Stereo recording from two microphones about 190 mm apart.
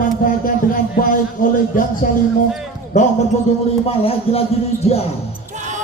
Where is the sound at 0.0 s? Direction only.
45° left (ahead or behind).